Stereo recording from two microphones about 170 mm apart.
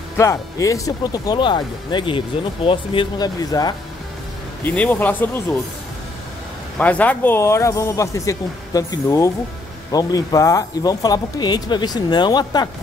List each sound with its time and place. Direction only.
0.2 s speech: 15° left (ahead or behind)
4.6 s speech: 10° left (ahead or behind)
6.8 s speech: 10° left (ahead or behind); by 12.6 s 25° left (ahead or behind)